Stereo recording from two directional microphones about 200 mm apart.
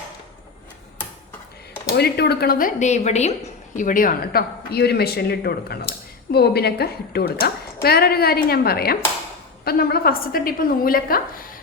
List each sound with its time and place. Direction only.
2.0 s a woman's voice: 55° left (ahead or behind)